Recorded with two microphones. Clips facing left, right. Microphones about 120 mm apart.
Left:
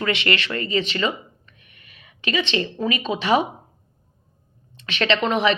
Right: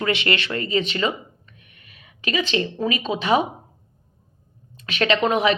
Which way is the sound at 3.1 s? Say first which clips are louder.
Even; 35° right (ahead or behind).